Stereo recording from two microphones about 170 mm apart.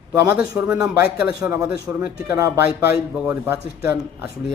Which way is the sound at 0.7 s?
20° right (ahead or behind).